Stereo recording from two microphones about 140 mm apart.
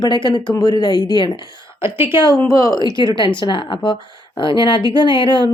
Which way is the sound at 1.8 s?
15° right (ahead or behind).